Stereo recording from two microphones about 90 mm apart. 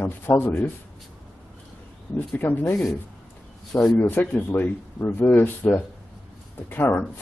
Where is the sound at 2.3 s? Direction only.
20° left (ahead or behind).